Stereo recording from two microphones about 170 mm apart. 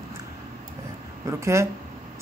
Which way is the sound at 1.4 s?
15° right (ahead or behind).